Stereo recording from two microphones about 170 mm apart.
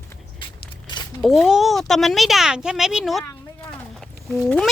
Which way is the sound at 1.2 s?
Centre (ahead or behind).